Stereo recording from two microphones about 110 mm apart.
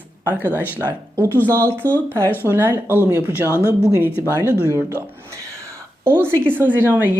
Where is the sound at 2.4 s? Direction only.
20° right (ahead or behind).